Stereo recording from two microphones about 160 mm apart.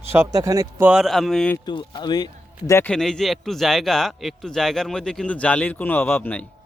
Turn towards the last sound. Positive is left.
turn(degrees=10)  # may be behind; listen again after turning